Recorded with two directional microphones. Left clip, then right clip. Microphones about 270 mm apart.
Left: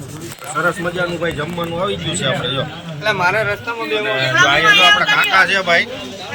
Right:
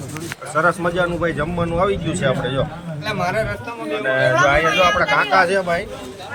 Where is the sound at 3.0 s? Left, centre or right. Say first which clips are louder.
Left 6 dB; centre.